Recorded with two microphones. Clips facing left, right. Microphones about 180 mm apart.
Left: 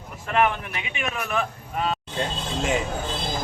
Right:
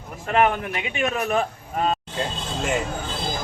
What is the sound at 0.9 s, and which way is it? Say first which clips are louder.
A man's voice: right 5 dB; 40° right (ahead or behind).